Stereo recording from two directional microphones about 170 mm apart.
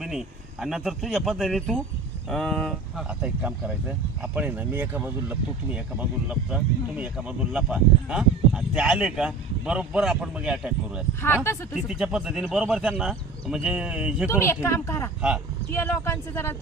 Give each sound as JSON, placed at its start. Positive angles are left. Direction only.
{"t": 0.0, "sound": "speech", "side_deg": 0}
{"t": 14.3, "sound": "speech", "side_deg": 15}